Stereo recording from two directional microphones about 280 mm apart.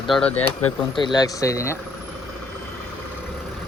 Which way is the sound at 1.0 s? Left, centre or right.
Centre.